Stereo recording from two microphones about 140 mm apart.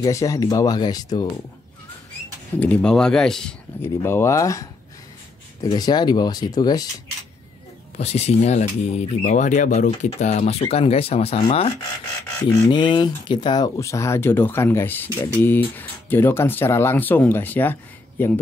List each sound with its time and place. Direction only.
0.0 s speech: 25° left (ahead or behind)
2.6 s speech: 10° left (ahead or behind)
3.8 s speech: 15° left (ahead or behind)
8.0 s speech: 50° left (ahead or behind)
9.8 s speech: 45° left (ahead or behind)
12.4 s speech: 35° left (ahead or behind)
13.7 s speech: 20° left (ahead or behind)